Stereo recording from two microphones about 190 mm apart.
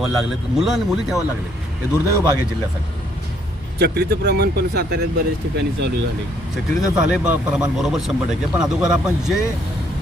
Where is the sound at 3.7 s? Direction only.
60° right (ahead or behind).